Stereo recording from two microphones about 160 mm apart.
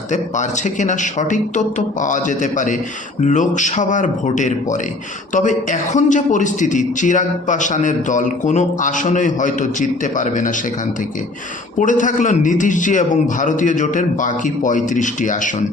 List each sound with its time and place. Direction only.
0.1 s a man's voice: 50° left (ahead or behind)
11.8 s a man's voice: 55° left (ahead or behind)